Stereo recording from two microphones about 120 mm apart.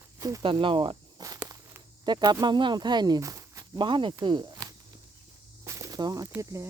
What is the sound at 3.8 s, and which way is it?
Speech, 45° right (ahead or behind).